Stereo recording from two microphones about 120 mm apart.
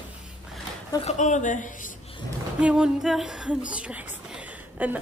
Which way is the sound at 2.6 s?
5° right (ahead or behind).